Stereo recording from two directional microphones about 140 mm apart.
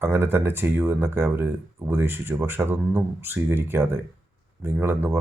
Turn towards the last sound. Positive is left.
turn(degrees=-15)  # may be behind; listen again after turning